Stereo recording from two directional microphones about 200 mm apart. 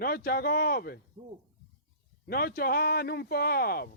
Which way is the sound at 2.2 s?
50° left (ahead or behind).